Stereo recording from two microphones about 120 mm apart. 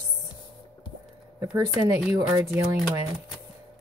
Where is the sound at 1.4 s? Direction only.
30° right (ahead or behind).